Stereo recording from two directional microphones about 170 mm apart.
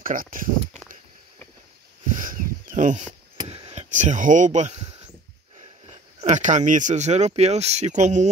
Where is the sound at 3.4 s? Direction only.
35° right (ahead or behind).